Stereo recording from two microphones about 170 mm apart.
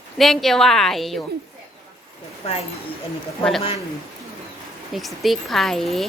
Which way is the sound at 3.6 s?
30° left (ahead or behind).